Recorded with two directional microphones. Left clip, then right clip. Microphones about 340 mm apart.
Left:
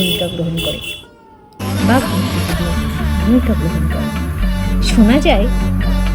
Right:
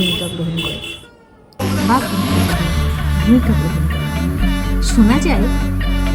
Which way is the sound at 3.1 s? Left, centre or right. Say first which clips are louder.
Even; centre.